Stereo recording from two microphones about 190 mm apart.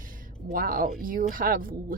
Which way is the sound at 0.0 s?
45° right (ahead or behind).